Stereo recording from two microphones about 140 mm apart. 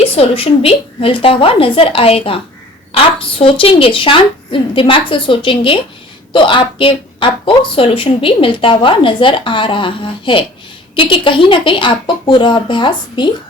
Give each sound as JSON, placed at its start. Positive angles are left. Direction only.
{"t": 0.0, "sound": "a woman's voice", "side_deg": 45}